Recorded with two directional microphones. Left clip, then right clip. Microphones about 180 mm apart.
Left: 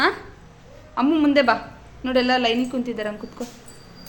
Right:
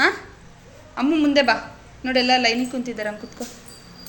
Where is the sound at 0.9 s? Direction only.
20° left (ahead or behind).